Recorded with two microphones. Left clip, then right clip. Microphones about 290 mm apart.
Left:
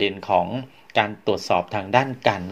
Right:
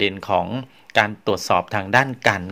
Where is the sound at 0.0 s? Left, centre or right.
Right.